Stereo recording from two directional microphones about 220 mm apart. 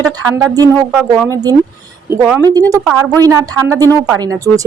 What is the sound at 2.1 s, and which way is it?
Speech, 10° right (ahead or behind).